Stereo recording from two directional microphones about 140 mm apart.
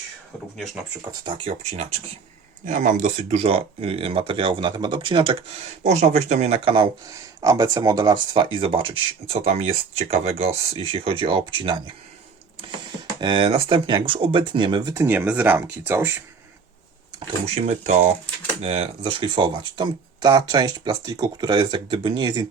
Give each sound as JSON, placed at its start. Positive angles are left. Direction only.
{"t": 1.2, "sound": "speech", "side_deg": -35}
{"t": 1.7, "sound": "speech", "side_deg": -50}
{"t": 2.6, "sound": "speech", "side_deg": -60}
{"t": 5.8, "sound": "speech", "side_deg": -55}
{"t": 7.1, "sound": "speech", "side_deg": -25}
{"t": 13.1, "sound": "speech", "side_deg": -35}
{"t": 14.9, "sound": "speech", "side_deg": -15}
{"t": 17.4, "sound": "speech", "side_deg": -50}